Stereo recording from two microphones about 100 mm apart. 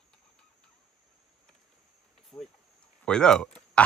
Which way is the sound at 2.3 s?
25° left (ahead or behind).